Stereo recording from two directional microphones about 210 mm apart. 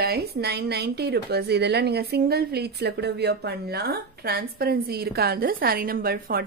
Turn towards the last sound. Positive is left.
turn(degrees=-45)  # may be behind; listen again after turning